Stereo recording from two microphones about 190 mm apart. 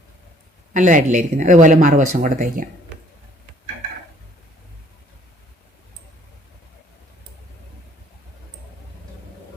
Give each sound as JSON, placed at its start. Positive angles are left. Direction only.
{"t": 0.7, "sound": "speech", "side_deg": -40}